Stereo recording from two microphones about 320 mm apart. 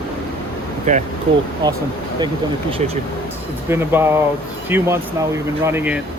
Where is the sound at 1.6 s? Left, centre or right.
Centre.